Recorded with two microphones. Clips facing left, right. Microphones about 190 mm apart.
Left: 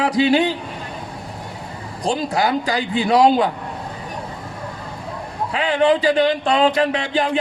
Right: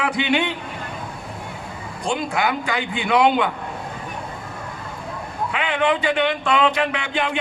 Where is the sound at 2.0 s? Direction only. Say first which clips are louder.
Left 3 dB; 35° left (ahead or behind).